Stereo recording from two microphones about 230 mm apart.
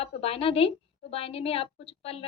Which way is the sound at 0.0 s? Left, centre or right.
Left.